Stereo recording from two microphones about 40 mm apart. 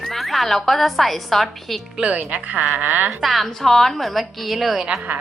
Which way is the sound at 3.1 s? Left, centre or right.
Centre.